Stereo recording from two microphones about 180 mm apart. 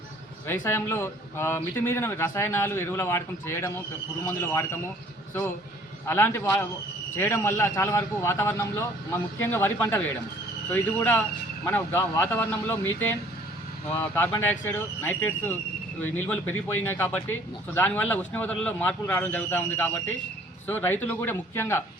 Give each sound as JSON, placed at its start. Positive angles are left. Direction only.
{"t": 0.4, "sound": "a man's voice", "side_deg": 15}
{"t": 6.1, "sound": "a man's voice", "side_deg": 15}
{"t": 13.9, "sound": "a man's voice", "side_deg": 10}